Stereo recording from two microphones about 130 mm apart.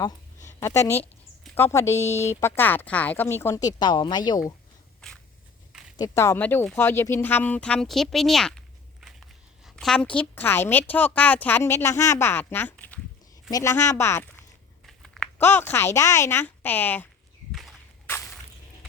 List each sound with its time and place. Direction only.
0.4 s a woman's voice: 20° left (ahead or behind)
2.0 s speech: 60° left (ahead or behind)
2.2 s speech: 20° left (ahead or behind)
4.9 s a sound: 5° left (ahead or behind)
6.0 s speech: 20° left (ahead or behind)
14.8 s a sound: centre (ahead or behind)
15.4 s speech: 15° left (ahead or behind)
17.5 s walk: centre (ahead or behind)